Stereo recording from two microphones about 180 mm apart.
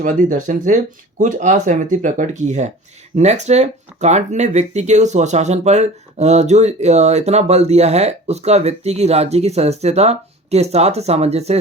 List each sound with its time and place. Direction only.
0.0 s speech: 45° right (ahead or behind)